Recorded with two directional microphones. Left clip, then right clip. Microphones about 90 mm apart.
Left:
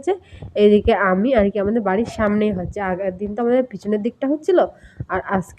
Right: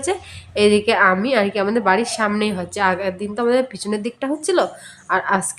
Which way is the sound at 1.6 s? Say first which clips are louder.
Right 3 dB; 20° left (ahead or behind).